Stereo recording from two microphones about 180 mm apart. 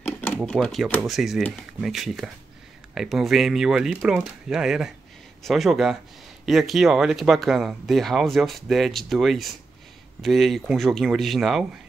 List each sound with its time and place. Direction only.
0.4 s speech: 5° left (ahead or behind)